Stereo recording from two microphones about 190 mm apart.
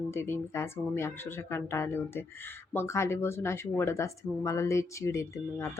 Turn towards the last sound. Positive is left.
turn(degrees=15)  # may be behind; listen again after turning